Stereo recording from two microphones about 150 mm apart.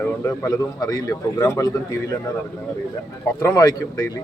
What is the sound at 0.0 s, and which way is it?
A man's voice, 20° left (ahead or behind).